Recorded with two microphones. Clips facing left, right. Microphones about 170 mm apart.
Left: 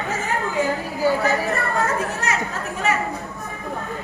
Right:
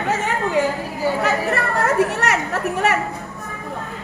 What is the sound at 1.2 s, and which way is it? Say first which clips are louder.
Chatter: right 1 dB; 75° right (ahead or behind).